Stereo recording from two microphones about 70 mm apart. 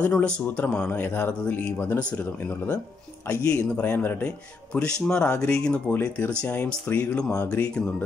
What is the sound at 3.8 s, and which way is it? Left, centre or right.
Speech, left.